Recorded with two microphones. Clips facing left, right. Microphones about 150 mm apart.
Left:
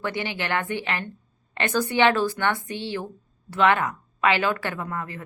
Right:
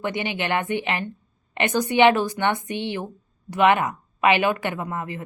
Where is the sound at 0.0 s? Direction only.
20° right (ahead or behind).